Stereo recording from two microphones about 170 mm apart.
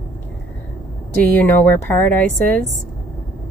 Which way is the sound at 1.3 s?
10° left (ahead or behind).